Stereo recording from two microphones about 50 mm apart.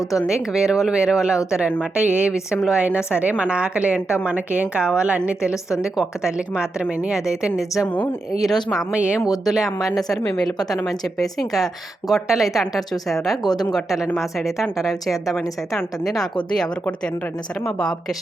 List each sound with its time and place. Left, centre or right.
0.3 s a woman's voice: centre; by 4.6 s right
4.7 s a woman's voice: centre
5.8 s speech: centre
8.4 s speech: centre
8.9 s a woman's voice: right
9.4 s a woman's voice: centre